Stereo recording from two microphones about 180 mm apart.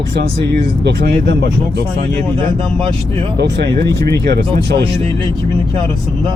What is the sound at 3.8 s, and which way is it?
Speech, 15° left (ahead or behind).